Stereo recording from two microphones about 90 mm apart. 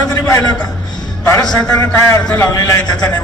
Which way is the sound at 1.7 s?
25° left (ahead or behind).